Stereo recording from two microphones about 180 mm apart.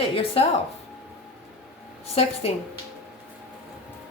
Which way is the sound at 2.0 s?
35° left (ahead or behind).